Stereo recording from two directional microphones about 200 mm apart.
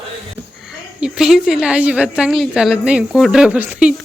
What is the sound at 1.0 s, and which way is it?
A woman's voice, 5° right (ahead or behind).